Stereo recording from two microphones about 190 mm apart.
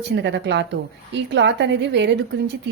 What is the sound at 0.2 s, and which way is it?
A woman's voice, 65° right (ahead or behind).